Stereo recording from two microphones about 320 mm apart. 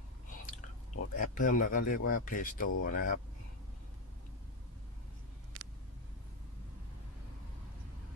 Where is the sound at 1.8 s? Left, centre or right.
Left.